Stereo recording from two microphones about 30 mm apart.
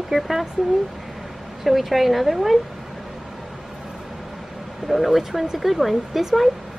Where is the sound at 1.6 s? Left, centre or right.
Centre.